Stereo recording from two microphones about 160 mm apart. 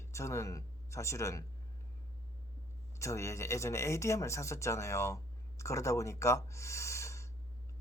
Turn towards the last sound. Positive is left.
turn(degrees=20)  # may be behind; listen again after turning